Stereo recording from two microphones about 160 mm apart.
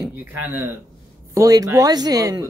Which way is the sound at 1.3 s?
20° right (ahead or behind).